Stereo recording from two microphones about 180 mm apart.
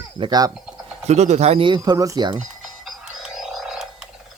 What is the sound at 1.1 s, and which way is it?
Speech, 40° right (ahead or behind).